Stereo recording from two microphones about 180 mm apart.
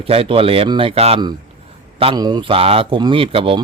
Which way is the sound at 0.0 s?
30° right (ahead or behind).